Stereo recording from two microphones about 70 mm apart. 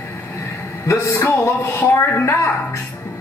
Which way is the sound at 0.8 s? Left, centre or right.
Left.